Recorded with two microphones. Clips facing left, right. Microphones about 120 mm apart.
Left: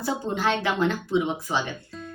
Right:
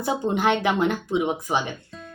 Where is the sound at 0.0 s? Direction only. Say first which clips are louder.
Right 3 dB; 20° right (ahead or behind).